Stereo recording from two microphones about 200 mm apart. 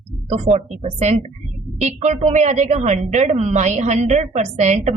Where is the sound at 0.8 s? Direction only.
35° right (ahead or behind).